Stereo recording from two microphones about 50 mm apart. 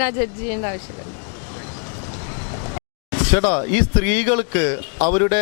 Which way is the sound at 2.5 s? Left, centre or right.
Left.